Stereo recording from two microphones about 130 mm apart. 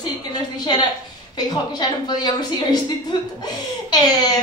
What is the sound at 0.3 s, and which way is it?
A woman's voice, 35° left (ahead or behind).